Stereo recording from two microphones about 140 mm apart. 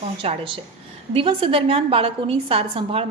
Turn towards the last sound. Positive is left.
turn(degrees=-40)  # may be behind; listen again after turning